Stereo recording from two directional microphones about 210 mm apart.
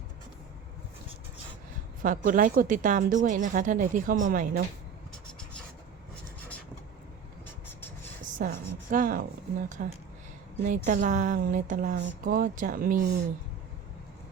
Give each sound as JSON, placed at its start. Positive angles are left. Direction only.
{"t": 2.0, "sound": "a woman's voice", "side_deg": -40}
{"t": 7.4, "sound": "vehicle", "side_deg": 10}
{"t": 8.4, "sound": "a sound", "side_deg": -40}
{"t": 9.8, "sound": "a woman's voice", "side_deg": -35}